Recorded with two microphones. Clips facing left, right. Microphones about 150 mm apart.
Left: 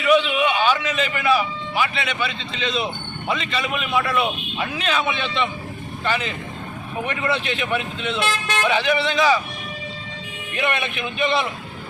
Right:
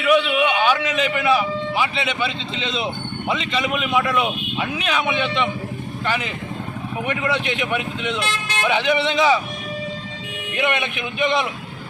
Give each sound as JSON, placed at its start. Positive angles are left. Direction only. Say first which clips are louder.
{"t": 0.0, "sound": "a man's voice", "louder": "even", "side_deg": -10}
{"t": 10.6, "sound": "speech", "louder": "right 1 dB", "side_deg": -15}